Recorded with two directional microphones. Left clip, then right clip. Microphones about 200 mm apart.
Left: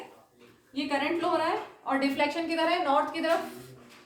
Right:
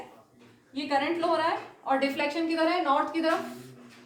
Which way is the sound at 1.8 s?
25° right (ahead or behind).